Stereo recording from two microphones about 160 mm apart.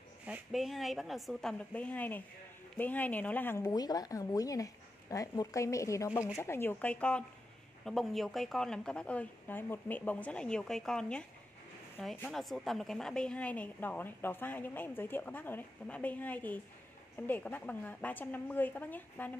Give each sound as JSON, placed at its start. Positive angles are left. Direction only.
{"t": 0.3, "sound": "a woman's voice", "side_deg": 0}